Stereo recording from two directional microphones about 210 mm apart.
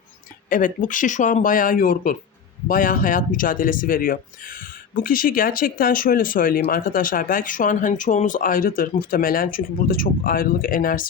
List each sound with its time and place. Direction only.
0.5 s speech: 40° left (ahead or behind)